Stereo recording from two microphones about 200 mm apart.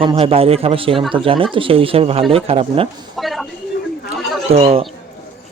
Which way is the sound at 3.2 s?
Centre (ahead or behind).